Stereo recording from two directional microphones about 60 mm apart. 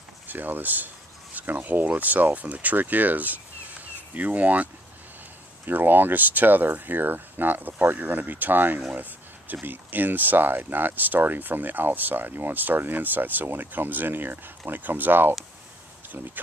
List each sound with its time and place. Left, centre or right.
0.3 s speech: right
5.7 s speech: right